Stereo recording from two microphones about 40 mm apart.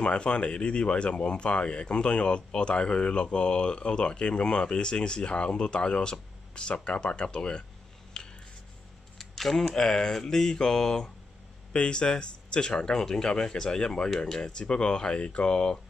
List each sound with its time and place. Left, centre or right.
0.0 s speech: left
8.2 s a sound: centre
9.2 s speech: centre; by 15.8 s left